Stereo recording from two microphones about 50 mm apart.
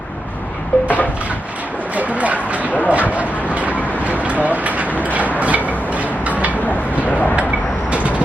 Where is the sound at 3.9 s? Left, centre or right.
Right.